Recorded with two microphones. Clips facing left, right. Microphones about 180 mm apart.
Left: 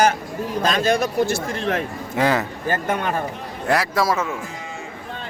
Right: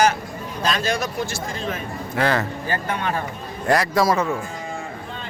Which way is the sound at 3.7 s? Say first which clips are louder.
Right 2 dB; centre (ahead or behind).